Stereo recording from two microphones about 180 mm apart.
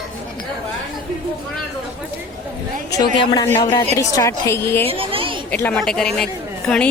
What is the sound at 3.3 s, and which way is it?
A woman's voice, 20° left (ahead or behind).